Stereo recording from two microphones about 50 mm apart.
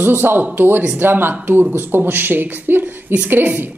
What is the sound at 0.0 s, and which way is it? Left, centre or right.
Speech, right.